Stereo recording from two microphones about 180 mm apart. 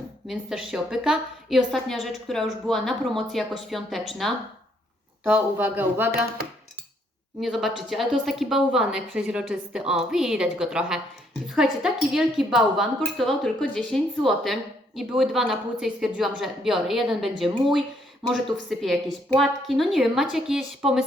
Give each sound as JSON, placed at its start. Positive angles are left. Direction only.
{"t": 0.3, "sound": "a woman's voice", "side_deg": 0}
{"t": 5.2, "sound": "speech", "side_deg": -10}
{"t": 6.1, "sound": "speech", "side_deg": -55}
{"t": 7.3, "sound": "a woman's voice", "side_deg": 0}